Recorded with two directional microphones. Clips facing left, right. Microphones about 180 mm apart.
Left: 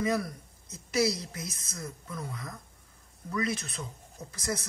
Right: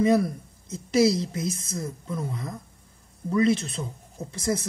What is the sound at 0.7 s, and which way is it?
Speech, 25° right (ahead or behind).